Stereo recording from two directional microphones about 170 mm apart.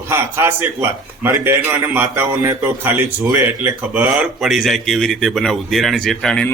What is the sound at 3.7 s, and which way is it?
Speech, 10° right (ahead or behind).